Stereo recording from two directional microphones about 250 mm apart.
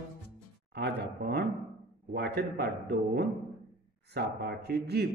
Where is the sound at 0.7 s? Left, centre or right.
Right.